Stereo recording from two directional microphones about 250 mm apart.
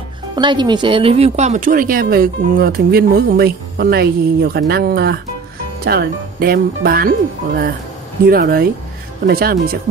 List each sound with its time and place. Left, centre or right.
0.4 s speech: centre; by 9.8 s right